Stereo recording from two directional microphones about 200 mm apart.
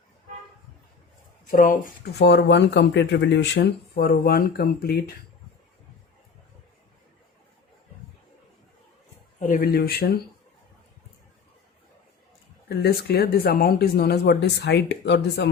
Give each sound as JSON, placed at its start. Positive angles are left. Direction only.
{"t": 1.5, "sound": "speech", "side_deg": 45}
{"t": 9.5, "sound": "speech", "side_deg": 50}
{"t": 12.6, "sound": "speech", "side_deg": 50}